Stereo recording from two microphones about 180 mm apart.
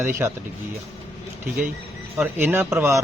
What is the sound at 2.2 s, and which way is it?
Speech, 15° right (ahead or behind).